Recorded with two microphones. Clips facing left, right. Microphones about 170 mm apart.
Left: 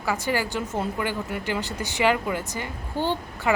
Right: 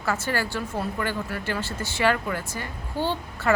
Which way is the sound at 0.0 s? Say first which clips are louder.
Left 1 dB; 15° left (ahead or behind).